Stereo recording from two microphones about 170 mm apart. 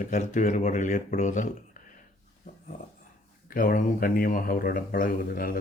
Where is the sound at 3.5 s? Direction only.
55° left (ahead or behind).